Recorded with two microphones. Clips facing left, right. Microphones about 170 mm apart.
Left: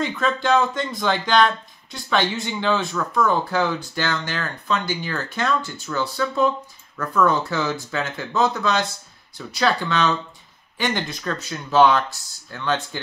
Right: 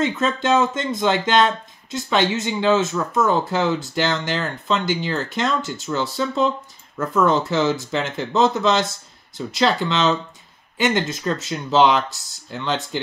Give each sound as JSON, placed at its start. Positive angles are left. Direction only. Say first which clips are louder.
{"t": 0.0, "sound": "speech", "louder": "right 2 dB", "side_deg": -25}